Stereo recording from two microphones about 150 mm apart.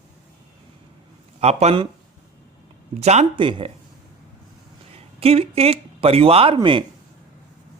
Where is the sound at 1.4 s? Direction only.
45° right (ahead or behind).